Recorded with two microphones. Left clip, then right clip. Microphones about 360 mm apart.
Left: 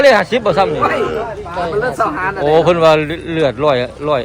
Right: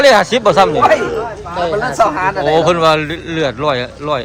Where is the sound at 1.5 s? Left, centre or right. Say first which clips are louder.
Right 3 dB; right.